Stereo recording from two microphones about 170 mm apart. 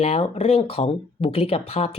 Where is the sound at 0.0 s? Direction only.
40° left (ahead or behind).